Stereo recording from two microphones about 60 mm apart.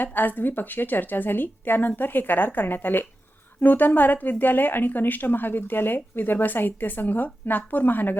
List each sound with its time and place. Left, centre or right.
0.0 s speech: left